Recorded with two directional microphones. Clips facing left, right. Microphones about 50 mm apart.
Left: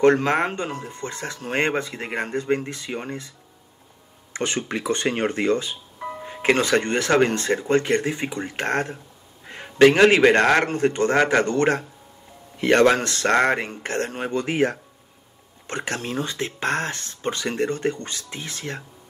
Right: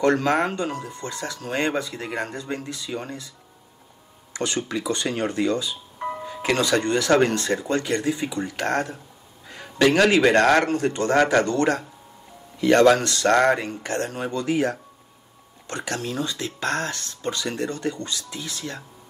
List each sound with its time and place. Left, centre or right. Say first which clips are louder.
0.0 s speech: left 2 dB; left
4.3 s speech: left 1 dB; left